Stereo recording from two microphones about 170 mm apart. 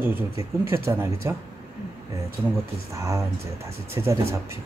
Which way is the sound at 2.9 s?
20° right (ahead or behind).